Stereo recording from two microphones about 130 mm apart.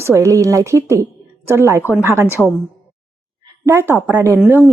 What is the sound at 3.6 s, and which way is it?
A woman's voice, 20° right (ahead or behind).